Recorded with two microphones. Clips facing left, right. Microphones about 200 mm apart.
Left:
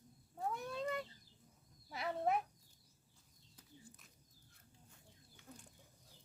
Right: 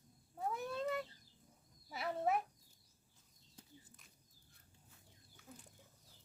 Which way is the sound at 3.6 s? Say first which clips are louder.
Right 5 dB; 30° right (ahead or behind).